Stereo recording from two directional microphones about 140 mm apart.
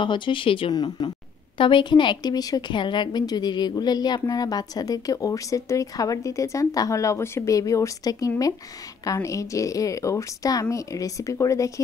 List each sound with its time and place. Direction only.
0.0 s a woman's voice: 35° left (ahead or behind)